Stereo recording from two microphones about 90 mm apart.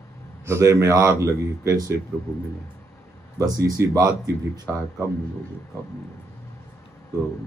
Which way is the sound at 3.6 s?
35° right (ahead or behind).